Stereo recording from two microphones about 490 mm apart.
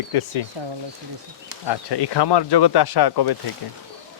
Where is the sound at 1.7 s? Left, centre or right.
Left.